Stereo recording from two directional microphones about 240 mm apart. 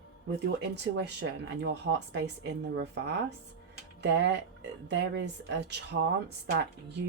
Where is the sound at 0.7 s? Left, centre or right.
Right.